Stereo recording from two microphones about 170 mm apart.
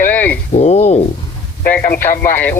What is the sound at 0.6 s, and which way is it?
Speech, 40° left (ahead or behind).